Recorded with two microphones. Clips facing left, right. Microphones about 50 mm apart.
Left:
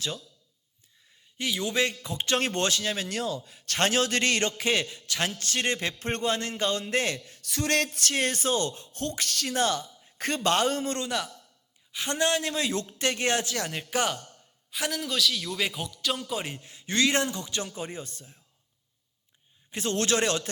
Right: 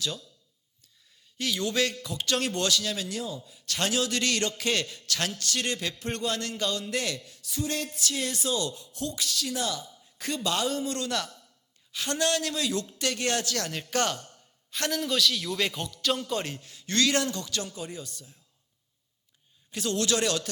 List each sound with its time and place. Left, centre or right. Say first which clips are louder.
1.4 s a man's voice: even; centre
3.1 s speech: left 3 dB; left
3.7 s a man's voice: left 3 dB; left
5.4 s a man's voice: left 2 dB; left
7.4 s speech: left 5 dB; left
11.1 s a man's voice: left 1 dB; centre
16.5 s a man's voice: even; left
19.7 s a man's voice: left 1 dB; left